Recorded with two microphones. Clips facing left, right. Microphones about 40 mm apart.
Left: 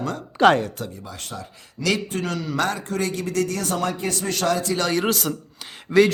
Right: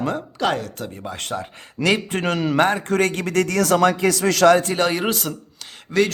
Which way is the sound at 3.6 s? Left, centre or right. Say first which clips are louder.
Right 8 dB; right.